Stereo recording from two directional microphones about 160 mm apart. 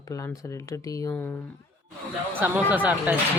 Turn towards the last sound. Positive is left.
turn(degrees=-10)  # may be behind; listen again after turning